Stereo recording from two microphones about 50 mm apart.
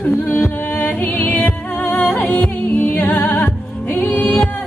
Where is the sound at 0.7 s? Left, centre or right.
Left.